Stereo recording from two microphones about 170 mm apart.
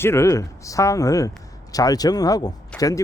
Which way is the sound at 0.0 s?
15° left (ahead or behind).